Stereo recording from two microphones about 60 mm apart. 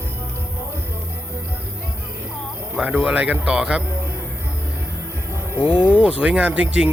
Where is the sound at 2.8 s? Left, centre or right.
Right.